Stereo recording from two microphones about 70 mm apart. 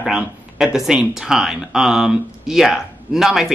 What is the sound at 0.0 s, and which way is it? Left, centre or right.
Speech, centre.